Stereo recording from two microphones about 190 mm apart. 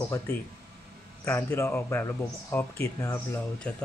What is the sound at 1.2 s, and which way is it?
Speech, 10° left (ahead or behind).